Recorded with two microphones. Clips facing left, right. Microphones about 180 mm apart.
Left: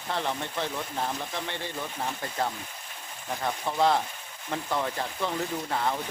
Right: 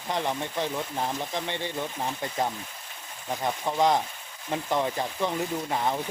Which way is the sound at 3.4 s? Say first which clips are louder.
Right 1 dB; 15° right (ahead or behind).